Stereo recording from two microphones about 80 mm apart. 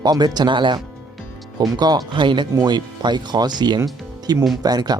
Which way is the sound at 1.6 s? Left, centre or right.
Right.